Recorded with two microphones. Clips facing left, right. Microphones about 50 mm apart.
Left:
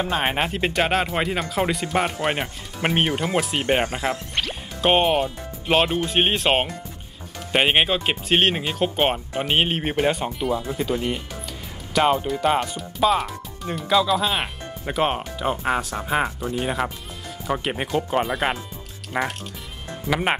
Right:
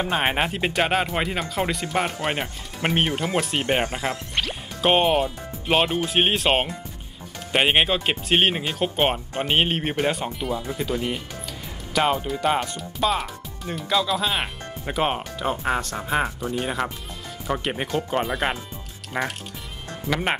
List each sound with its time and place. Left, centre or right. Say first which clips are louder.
0.0 s speech: even; centre
16.3 s speech: left 1 dB; left
16.5 s speech: left 2 dB; centre